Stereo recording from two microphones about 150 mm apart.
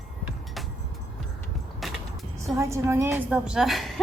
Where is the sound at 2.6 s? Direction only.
20° right (ahead or behind).